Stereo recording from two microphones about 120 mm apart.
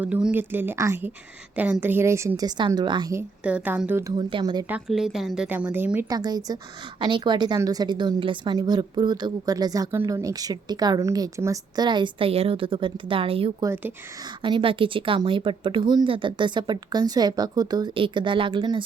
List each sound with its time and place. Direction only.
0.0 s a woman's voice: 10° right (ahead or behind); by 3.1 s 35° right (ahead or behind)
3.4 s speech: 10° right (ahead or behind)
4.1 s a woman's voice: 45° right (ahead or behind)
4.9 s speech: 5° right (ahead or behind)
5.5 s speech: 15° right (ahead or behind)
6.1 s a woman's voice: 35° right (ahead or behind)
12.3 s a woman's voice: 55° right (ahead or behind)